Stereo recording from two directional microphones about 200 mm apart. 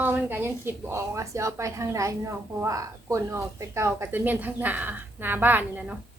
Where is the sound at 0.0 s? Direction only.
10° right (ahead or behind).